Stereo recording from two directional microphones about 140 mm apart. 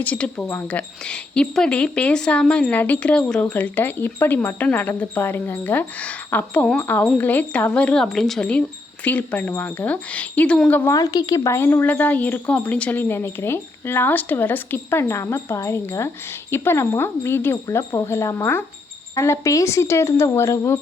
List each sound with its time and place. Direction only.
0.0 s speech: 10° left (ahead or behind)
10.9 s speech: 25° left (ahead or behind)